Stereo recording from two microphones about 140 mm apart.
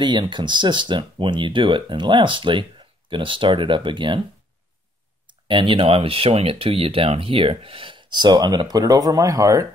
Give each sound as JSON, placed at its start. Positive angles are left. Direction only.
{"t": 0.0, "sound": "speech", "side_deg": -35}
{"t": 5.5, "sound": "speech", "side_deg": -40}